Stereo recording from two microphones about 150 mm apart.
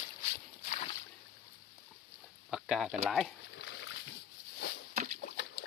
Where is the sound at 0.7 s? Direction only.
45° left (ahead or behind).